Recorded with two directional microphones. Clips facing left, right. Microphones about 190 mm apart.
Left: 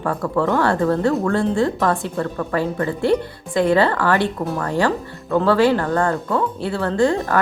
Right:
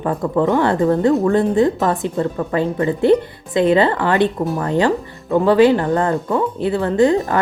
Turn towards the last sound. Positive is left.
turn(degrees=-20)  # may be behind; listen again after turning